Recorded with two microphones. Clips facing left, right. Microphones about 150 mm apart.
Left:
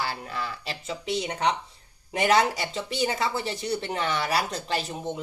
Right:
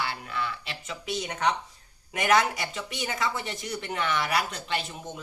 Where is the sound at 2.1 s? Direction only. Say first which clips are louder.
Left 2 dB; 30° left (ahead or behind).